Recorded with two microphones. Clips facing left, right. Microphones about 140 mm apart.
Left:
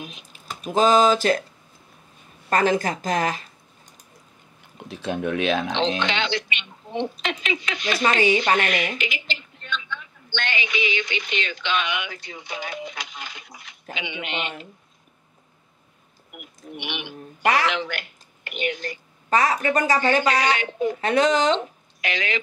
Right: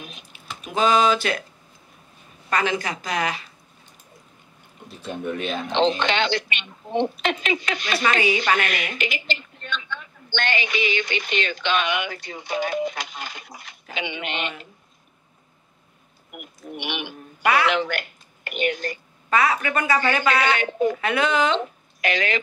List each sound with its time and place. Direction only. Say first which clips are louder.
0.3 s speech: left 5 dB; 40° left (ahead or behind)
2.5 s speech: left 4 dB; 45° left (ahead or behind)
4.8 s speech: left 3 dB; 90° left
5.8 s a woman's voice: right 3 dB; 50° right (ahead or behind)
8.0 s a woman's voice: left 3 dB; 30° left (ahead or behind)
8.9 s a woman's voice: right 2 dB; 45° right (ahead or behind)
16.3 s a woman's voice: right 2 dB; 50° right (ahead or behind)
17.4 s a woman's voice: right 1 dB; 40° left (ahead or behind)
17.6 s speech: right 3 dB; 50° right (ahead or behind)
19.2 s a woman's voice: left 1 dB; 35° left (ahead or behind)
20.5 s a woman's voice: right 3 dB; 50° right (ahead or behind)
21.0 s a woman's voice: left 2 dB; 35° left (ahead or behind)
22.0 s a woman's voice: right 3 dB; 50° right (ahead or behind)